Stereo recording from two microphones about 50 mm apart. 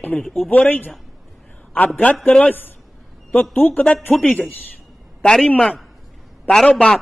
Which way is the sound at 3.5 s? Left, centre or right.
Left.